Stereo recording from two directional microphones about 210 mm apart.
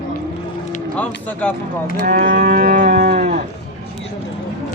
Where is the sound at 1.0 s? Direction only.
5° left (ahead or behind).